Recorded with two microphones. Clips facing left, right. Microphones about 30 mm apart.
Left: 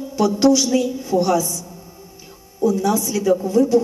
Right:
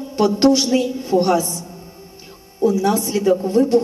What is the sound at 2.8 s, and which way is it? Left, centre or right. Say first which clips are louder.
Speech: right 2 dB; right.